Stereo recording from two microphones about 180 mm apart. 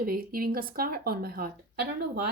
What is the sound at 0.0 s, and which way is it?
Speech, 55° right (ahead or behind).